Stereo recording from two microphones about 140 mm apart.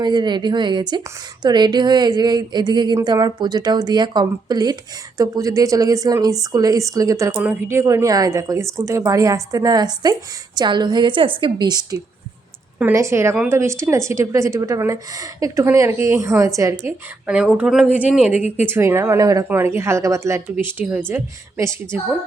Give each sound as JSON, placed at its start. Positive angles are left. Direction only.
{"t": 0.0, "sound": "speech", "side_deg": -30}
{"t": 17.2, "sound": "speech", "side_deg": -5}